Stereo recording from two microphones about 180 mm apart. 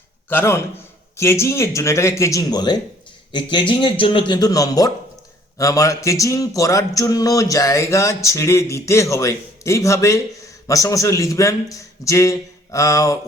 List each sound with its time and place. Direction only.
0.3 s a man's voice: 10° left (ahead or behind)